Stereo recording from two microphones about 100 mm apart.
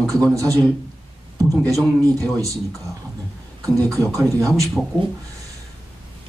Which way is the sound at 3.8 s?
35° right (ahead or behind).